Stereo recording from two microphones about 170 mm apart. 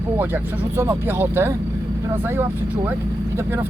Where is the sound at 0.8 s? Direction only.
15° right (ahead or behind).